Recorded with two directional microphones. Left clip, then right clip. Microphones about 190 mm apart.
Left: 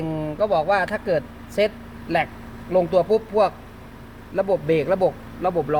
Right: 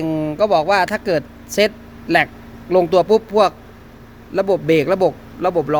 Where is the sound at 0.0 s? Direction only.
30° right (ahead or behind).